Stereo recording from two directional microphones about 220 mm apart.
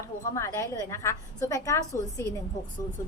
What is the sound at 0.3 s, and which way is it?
A woman's voice, 10° left (ahead or behind).